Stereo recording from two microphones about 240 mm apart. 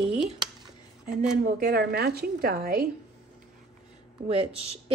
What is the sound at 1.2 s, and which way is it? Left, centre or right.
Speech, right.